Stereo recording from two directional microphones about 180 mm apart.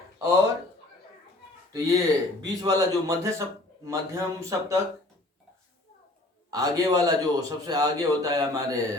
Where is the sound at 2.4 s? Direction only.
20° right (ahead or behind).